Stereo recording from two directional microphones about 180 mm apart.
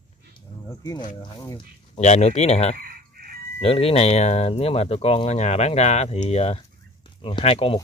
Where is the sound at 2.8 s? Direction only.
55° right (ahead or behind).